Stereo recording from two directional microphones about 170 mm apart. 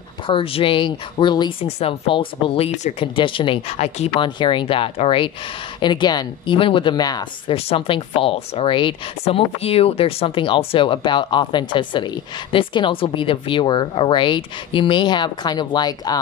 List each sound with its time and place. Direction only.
0.3 s speech: 35° left (ahead or behind)
3.2 s speech: 30° left (ahead or behind)